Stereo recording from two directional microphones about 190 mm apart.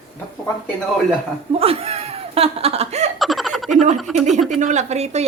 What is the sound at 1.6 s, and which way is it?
Speech, 30° right (ahead or behind).